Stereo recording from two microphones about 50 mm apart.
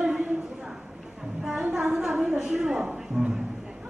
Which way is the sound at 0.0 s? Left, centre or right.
Centre.